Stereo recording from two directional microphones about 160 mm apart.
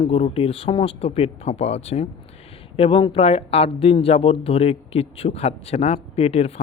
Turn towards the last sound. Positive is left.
turn(degrees=40)  # may be behind; listen again after turning